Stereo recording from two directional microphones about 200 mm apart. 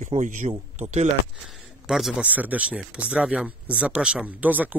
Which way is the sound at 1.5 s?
Centre (ahead or behind).